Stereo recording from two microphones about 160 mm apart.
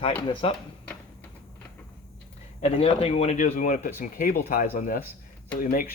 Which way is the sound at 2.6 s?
40° left (ahead or behind).